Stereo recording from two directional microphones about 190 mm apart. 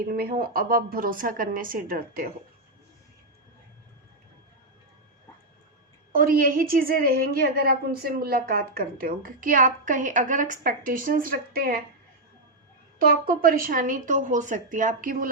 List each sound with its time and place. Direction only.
0.1 s a woman's voice: 50° right (ahead or behind)
6.1 s a woman's voice: 50° right (ahead or behind)
13.0 s a woman's voice: 50° right (ahead or behind)